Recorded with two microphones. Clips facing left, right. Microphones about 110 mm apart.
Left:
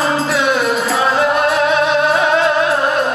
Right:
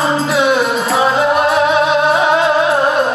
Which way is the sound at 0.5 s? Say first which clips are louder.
Right 1 dB; centre (ahead or behind).